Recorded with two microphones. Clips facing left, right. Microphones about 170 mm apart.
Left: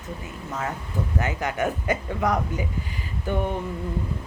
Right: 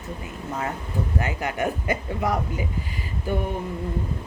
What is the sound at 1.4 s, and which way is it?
A woman's voice, 10° right (ahead or behind).